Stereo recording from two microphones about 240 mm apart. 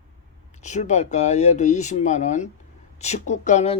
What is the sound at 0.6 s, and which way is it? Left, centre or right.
A woman's voice, left.